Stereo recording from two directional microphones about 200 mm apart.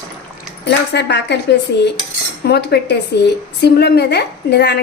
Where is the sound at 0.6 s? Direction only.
60° left (ahead or behind).